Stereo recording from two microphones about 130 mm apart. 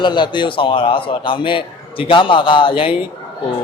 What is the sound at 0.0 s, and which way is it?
A man's voice, 35° left (ahead or behind).